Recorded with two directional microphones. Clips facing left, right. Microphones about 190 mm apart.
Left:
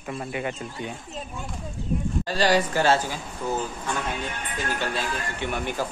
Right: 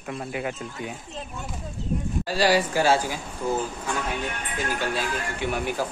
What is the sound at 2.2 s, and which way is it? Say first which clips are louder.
Speech: right 1 dB; 10° right (ahead or behind).